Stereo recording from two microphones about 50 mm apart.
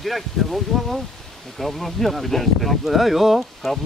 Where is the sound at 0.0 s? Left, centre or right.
Centre.